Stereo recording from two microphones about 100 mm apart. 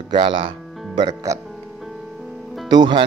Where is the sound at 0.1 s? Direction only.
60° right (ahead or behind).